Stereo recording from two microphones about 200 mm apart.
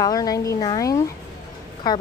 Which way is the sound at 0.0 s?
20° left (ahead or behind).